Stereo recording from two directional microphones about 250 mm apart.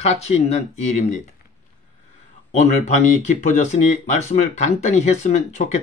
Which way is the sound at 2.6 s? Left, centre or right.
Left.